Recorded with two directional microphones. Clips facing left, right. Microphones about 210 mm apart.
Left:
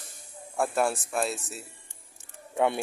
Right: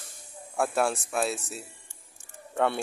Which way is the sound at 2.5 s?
15° left (ahead or behind).